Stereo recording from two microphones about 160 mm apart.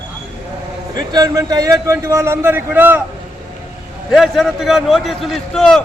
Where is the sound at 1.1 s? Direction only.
20° right (ahead or behind).